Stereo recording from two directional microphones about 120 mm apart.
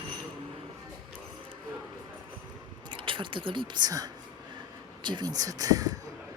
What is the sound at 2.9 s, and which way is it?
Speech, 45° right (ahead or behind).